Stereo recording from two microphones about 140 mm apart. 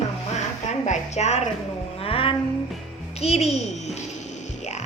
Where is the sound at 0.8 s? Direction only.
55° left (ahead or behind).